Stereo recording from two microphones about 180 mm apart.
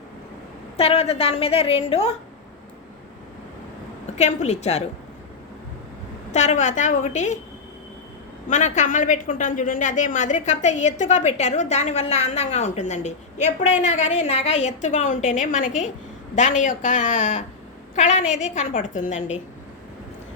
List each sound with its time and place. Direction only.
0.8 s a woman's voice: 35° left (ahead or behind)
4.2 s a woman's voice: 40° left (ahead or behind)
6.3 s a woman's voice: 40° left (ahead or behind)
8.4 s a woman's voice: 40° left (ahead or behind)